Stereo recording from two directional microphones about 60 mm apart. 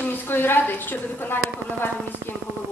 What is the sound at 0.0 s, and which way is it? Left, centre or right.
A woman's voice, left.